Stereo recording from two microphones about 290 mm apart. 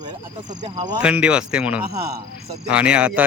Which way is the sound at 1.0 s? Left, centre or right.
Centre.